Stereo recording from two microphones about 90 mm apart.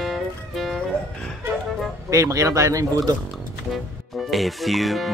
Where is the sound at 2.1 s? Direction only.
40° right (ahead or behind).